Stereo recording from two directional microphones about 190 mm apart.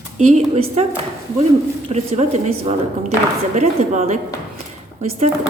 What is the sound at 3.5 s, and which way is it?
Speech, 40° right (ahead or behind).